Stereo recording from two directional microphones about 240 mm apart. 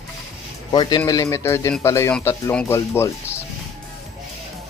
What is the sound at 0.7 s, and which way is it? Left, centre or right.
Speech, centre.